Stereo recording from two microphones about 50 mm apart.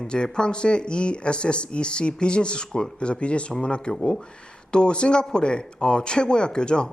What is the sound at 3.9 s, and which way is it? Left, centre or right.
Speech, centre.